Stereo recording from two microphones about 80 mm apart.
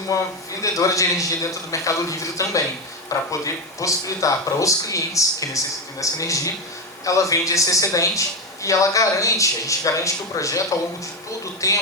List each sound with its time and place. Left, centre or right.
0.1 s speech: left
11.6 s speech: left